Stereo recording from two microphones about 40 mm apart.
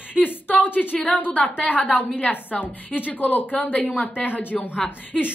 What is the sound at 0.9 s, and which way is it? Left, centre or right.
A woman's voice, left.